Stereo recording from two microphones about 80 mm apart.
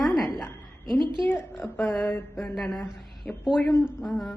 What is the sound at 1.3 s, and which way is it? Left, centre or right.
Speech, left.